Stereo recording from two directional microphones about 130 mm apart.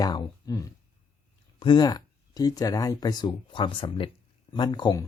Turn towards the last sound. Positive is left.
turn(degrees=35)  # may be behind; listen again after turning